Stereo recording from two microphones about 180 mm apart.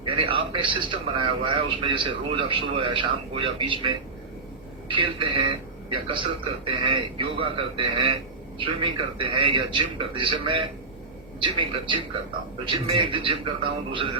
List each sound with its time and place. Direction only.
0.0 s a man's voice: 30° right (ahead or behind)